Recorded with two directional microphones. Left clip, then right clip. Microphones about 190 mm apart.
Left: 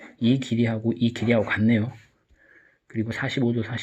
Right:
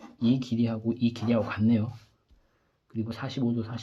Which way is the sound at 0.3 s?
35° left (ahead or behind).